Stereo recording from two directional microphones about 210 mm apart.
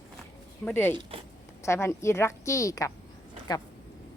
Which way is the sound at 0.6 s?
10° left (ahead or behind).